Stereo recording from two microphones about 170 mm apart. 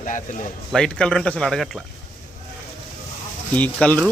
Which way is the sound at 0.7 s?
5° left (ahead or behind).